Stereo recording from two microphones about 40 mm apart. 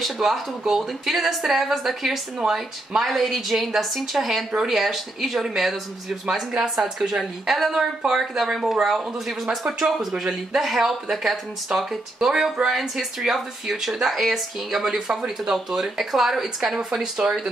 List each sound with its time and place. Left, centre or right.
0.0 s speech: centre
2.3 s speech: centre
3.0 s speech: centre
6.2 s speech: centre
7.5 s speech: centre